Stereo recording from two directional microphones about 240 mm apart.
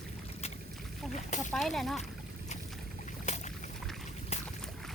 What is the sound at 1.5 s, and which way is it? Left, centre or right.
Speech, centre.